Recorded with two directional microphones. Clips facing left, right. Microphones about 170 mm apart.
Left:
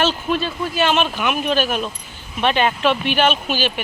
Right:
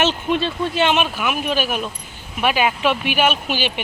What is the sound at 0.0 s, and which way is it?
Speech, 20° right (ahead or behind).